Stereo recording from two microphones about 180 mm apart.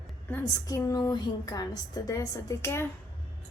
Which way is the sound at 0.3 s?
15° left (ahead or behind).